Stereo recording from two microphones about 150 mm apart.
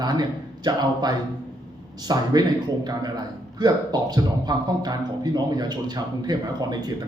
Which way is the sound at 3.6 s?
25° right (ahead or behind).